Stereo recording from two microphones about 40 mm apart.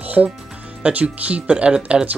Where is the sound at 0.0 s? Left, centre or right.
Right.